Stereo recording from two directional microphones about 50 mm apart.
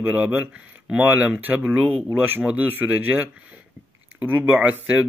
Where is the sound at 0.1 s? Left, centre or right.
Right.